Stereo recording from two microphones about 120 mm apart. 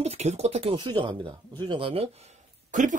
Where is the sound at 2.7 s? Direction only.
90° right.